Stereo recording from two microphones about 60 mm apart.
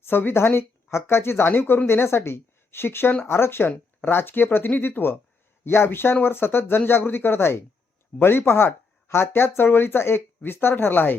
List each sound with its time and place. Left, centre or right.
0.0 s speech: left